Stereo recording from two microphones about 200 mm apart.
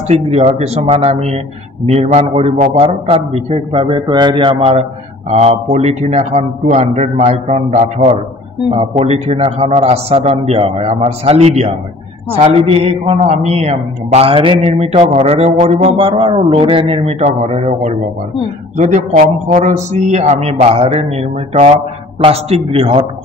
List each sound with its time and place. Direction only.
0.1 s a man's voice: 30° right (ahead or behind)
19.5 s a man's voice: 35° right (ahead or behind)